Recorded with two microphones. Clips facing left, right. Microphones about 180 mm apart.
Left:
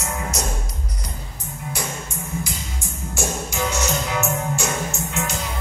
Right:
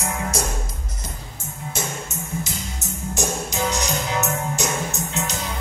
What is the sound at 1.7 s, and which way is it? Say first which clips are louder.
Music: right 1 dB; 25° right (ahead or behind).